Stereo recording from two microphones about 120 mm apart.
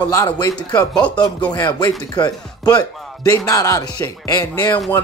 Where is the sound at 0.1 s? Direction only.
25° left (ahead or behind).